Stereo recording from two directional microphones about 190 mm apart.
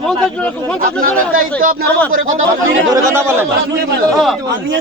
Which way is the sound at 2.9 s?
15° right (ahead or behind).